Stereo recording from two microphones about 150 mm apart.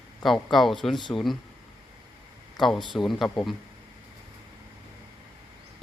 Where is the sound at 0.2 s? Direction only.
Centre (ahead or behind).